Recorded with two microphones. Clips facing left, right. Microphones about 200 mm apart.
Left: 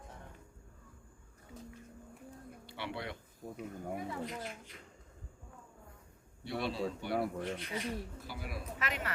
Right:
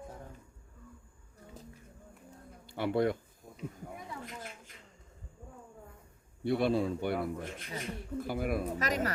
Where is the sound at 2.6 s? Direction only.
45° right (ahead or behind).